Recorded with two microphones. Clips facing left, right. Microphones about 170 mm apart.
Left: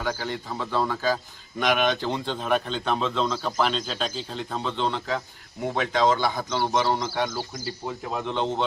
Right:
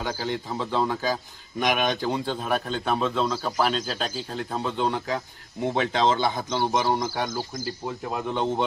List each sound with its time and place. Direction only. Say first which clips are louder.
0.0 s a man's voice: right 1 dB; 15° right (ahead or behind)
5.7 s a man's voice: left 1 dB; 30° right (ahead or behind); by 8.6 s 10° right (ahead or behind)